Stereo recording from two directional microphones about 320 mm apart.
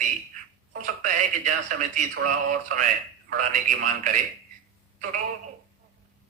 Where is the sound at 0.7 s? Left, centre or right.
Right.